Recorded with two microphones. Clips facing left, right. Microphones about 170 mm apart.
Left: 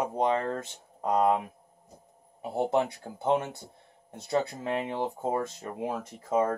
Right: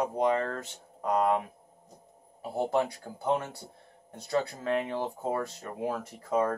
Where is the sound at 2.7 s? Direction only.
20° left (ahead or behind).